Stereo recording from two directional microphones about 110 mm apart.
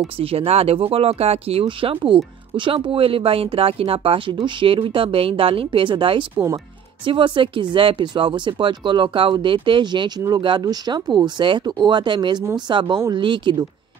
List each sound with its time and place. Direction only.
0.2 s speech: 60° right (ahead or behind)